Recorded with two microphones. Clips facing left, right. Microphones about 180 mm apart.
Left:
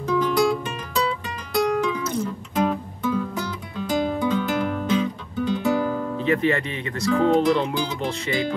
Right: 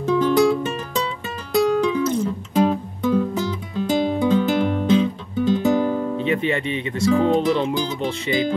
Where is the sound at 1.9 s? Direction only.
25° right (ahead or behind).